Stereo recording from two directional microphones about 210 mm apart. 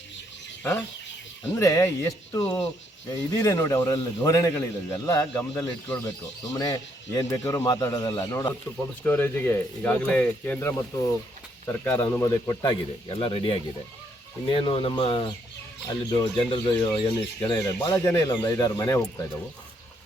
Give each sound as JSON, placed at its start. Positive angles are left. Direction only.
{"t": 0.6, "sound": "a man's voice", "side_deg": 10}